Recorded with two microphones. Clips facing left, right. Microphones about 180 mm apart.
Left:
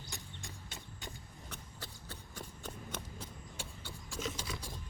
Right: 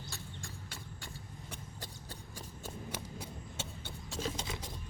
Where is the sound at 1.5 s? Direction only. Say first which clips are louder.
Even; 15° right (ahead or behind).